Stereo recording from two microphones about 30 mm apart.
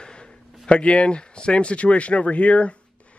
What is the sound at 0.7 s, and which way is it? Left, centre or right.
Speech, left.